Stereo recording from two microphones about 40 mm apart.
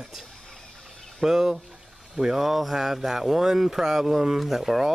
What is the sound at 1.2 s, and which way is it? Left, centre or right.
Speech, centre.